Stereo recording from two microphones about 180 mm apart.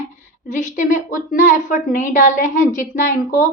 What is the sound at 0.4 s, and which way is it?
A woman's voice, 45° left (ahead or behind).